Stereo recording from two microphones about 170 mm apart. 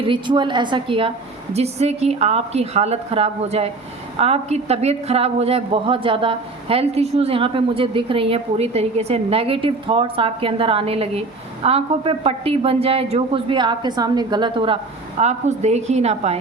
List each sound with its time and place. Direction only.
0.1 s a woman's voice: 30° right (ahead or behind)
15.2 s a woman's voice: 40° right (ahead or behind)